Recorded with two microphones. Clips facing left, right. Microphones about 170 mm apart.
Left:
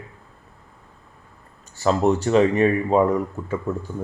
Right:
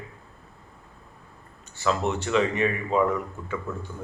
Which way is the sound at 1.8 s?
40° left (ahead or behind).